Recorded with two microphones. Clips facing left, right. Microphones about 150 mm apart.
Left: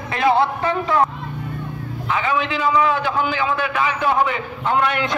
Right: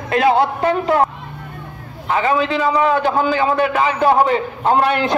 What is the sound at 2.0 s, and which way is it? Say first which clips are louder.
A man's voice: right 5 dB; 40° right (ahead or behind).